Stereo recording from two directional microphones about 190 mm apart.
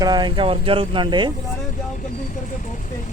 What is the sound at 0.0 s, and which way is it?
Speech, 20° right (ahead or behind).